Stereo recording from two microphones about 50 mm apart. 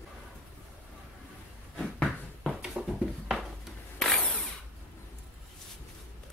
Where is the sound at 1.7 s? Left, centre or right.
Centre.